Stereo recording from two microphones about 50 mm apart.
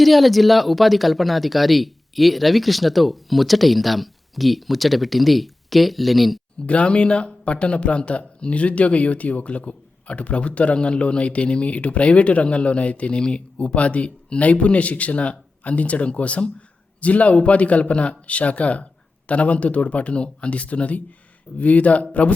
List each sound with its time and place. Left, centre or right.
0.0 s speech: centre
6.7 s speech: left